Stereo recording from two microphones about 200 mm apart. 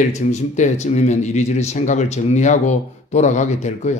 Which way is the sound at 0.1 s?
35° left (ahead or behind).